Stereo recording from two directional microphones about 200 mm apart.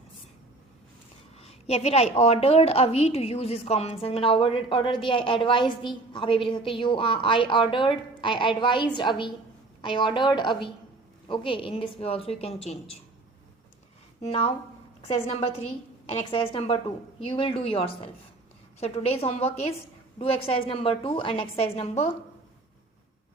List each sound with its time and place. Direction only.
1.4 s a woman's voice: 30° left (ahead or behind)
14.2 s a woman's voice: 30° left (ahead or behind)